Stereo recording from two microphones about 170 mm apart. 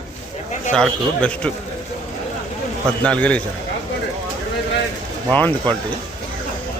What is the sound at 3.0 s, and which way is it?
Speech, 5° left (ahead or behind).